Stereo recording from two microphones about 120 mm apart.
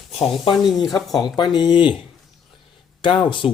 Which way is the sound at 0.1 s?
55° left (ahead or behind).